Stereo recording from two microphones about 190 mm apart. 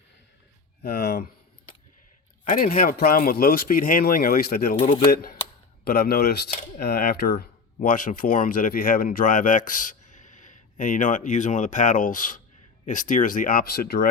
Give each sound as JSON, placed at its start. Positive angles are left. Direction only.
{"t": 0.8, "sound": "a sound", "side_deg": 55}
{"t": 2.4, "sound": "speech", "side_deg": 45}
{"t": 4.8, "sound": "speech", "side_deg": 40}
{"t": 5.1, "sound": "speech", "side_deg": 50}